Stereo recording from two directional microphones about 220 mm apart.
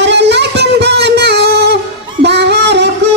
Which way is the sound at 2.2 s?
50° right (ahead or behind).